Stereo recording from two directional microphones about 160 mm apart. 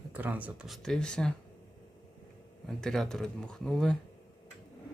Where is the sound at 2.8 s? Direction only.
5° left (ahead or behind).